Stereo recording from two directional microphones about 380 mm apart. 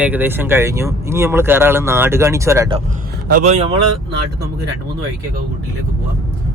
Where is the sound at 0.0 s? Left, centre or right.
Centre.